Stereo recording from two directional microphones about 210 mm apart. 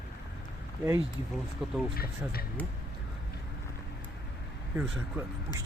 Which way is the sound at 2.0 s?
45° left (ahead or behind).